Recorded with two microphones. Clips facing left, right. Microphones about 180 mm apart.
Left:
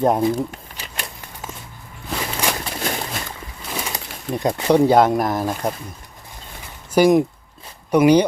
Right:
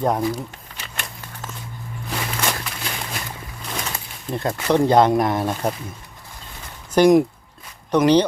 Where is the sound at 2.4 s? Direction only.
15° left (ahead or behind).